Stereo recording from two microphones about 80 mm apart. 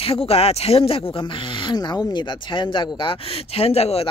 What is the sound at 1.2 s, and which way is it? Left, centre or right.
Speech, left.